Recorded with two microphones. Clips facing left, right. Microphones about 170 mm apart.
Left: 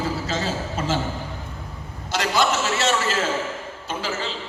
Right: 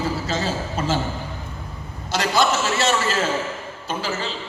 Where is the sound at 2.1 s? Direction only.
35° right (ahead or behind).